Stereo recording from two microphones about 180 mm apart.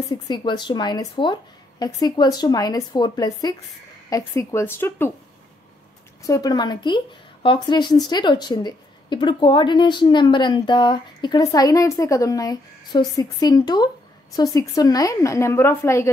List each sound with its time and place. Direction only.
0.3 s a woman's voice: 25° left (ahead or behind)
6.2 s a woman's voice: 20° left (ahead or behind)